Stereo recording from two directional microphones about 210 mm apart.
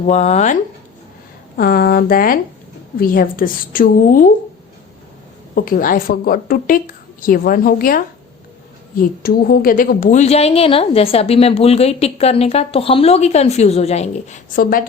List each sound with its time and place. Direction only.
0.0 s a woman's voice: 30° left (ahead or behind)
1.5 s a woman's voice: 45° left (ahead or behind)
5.5 s a woman's voice: 45° left (ahead or behind)